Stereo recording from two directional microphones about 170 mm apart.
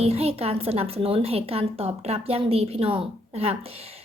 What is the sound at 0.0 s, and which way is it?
A woman's voice, 35° right (ahead or behind).